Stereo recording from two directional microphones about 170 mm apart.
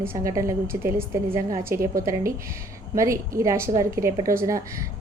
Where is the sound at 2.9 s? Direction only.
15° right (ahead or behind).